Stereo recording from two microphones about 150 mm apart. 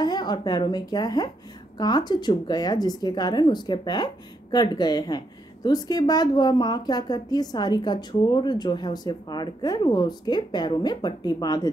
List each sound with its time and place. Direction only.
0.0 s speech: 30° left (ahead or behind)